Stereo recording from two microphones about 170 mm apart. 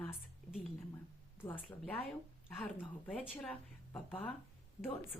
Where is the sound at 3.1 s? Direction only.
Centre (ahead or behind).